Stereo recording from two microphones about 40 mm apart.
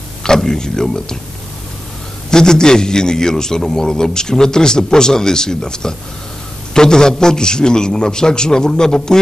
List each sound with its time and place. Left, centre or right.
0.2 s a man's voice: centre
2.3 s a man's voice: centre